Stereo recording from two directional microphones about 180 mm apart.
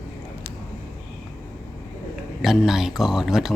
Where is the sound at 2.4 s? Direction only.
Centre (ahead or behind).